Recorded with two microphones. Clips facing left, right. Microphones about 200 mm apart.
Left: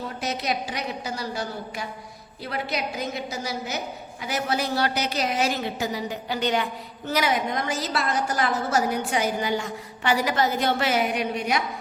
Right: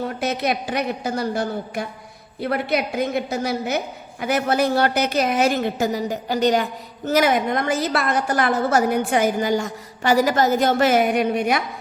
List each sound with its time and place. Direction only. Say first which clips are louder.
0.2 s a woman's voice: right 3 dB; 60° right (ahead or behind)